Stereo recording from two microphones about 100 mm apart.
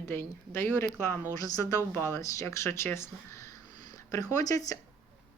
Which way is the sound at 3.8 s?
40° left (ahead or behind).